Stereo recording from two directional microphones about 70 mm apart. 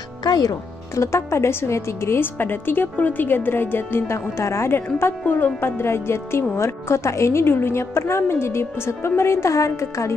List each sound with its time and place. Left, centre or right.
0.2 s speech: left
0.9 s a woman's voice: left